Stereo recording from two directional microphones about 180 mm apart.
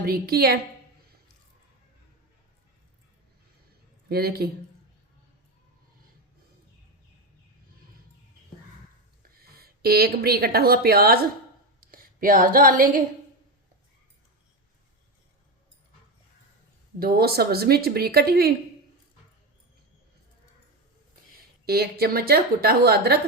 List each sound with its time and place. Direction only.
0.0 s speech: 55° right (ahead or behind)
4.1 s speech: 60° right (ahead or behind)
9.4 s a woman's voice: 55° right (ahead or behind)
17.0 s speech: 60° right (ahead or behind)
21.7 s speech: 60° right (ahead or behind)